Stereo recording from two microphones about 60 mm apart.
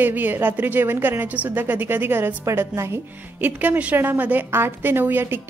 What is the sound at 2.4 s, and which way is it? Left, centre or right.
Speech, right.